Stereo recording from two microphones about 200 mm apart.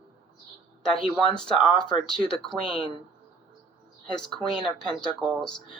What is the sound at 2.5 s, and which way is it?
Speech, 25° left (ahead or behind).